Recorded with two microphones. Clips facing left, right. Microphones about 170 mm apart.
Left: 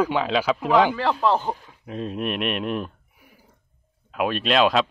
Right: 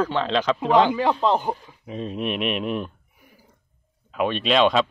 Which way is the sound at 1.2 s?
15° right (ahead or behind).